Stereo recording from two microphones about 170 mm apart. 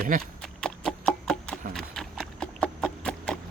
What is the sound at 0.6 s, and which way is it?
Horse, 5° left (ahead or behind).